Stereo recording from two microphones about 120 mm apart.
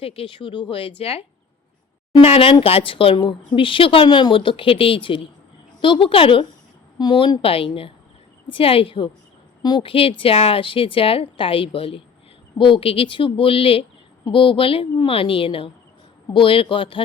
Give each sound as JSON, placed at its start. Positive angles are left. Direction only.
{"t": 0.0, "sound": "a woman's voice", "side_deg": 50}
{"t": 2.2, "sound": "a woman's voice", "side_deg": 55}
{"t": 7.0, "sound": "a woman's voice", "side_deg": 35}